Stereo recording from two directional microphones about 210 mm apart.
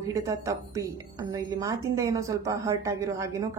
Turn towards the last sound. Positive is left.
turn(degrees=-15)  # may be behind; listen again after turning